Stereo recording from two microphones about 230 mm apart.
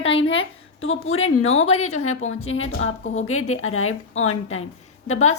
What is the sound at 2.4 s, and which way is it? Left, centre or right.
A woman's voice, left.